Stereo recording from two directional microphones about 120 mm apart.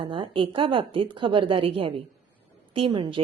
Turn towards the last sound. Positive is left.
turn(degrees=-45)  # may be behind; listen again after turning